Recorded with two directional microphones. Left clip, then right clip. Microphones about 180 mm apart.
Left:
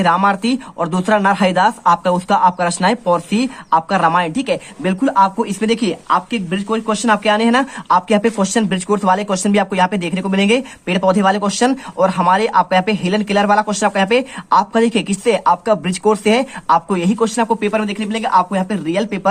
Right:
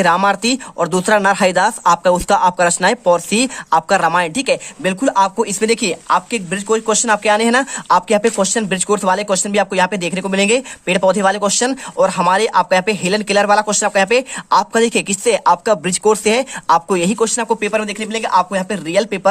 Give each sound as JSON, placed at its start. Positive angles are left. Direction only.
{"t": 0.0, "sound": "speech", "side_deg": -35}